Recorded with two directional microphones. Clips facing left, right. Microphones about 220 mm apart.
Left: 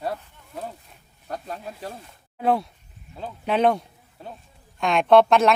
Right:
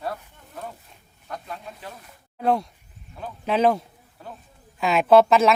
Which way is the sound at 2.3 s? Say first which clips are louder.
Even; centre (ahead or behind).